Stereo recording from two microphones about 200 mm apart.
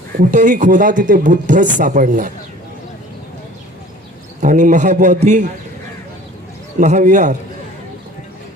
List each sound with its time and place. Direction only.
0.2 s speech: 40° right (ahead or behind)
4.4 s speech: 40° right (ahead or behind)
6.7 s speech: 40° right (ahead or behind)